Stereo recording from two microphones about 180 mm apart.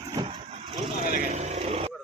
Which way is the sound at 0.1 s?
25° right (ahead or behind).